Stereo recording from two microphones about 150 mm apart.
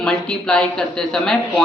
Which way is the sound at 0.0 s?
5° left (ahead or behind).